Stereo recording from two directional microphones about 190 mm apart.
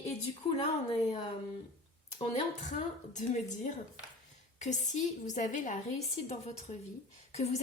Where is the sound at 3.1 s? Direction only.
40° left (ahead or behind).